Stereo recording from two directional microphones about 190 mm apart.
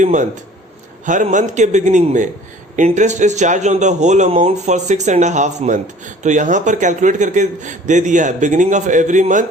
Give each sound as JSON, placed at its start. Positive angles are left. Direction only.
{"t": 0.0, "sound": "a man's voice", "side_deg": -40}